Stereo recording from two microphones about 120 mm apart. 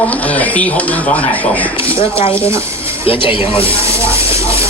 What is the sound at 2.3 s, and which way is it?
Speech, 20° right (ahead or behind).